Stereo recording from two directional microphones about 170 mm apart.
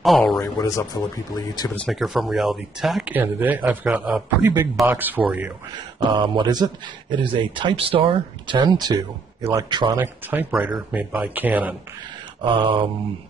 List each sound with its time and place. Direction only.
0.0 s speech: centre (ahead or behind)
0.4 s speech: 20° left (ahead or behind)
1.7 s speech: 5° left (ahead or behind)
6.1 s speech: 25° right (ahead or behind)
10.5 s speech: 10° right (ahead or behind)
12.4 s speech: 30° right (ahead or behind)